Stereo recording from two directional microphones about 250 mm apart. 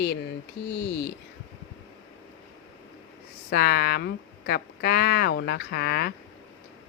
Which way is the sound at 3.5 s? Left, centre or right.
Left.